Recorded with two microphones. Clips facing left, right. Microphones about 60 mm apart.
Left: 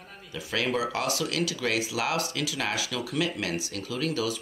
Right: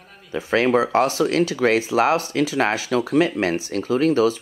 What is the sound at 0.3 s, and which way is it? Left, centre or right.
Speech, right.